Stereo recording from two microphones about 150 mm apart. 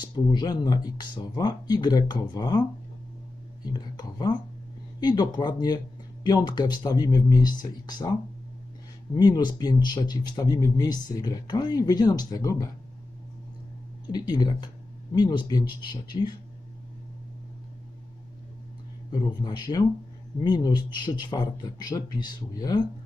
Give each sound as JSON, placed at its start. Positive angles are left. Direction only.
{"t": 0.0, "sound": "speech", "side_deg": 30}
{"t": 3.7, "sound": "speech", "side_deg": 30}
{"t": 9.1, "sound": "speech", "side_deg": 30}
{"t": 14.1, "sound": "speech", "side_deg": 25}
{"t": 19.2, "sound": "speech", "side_deg": 30}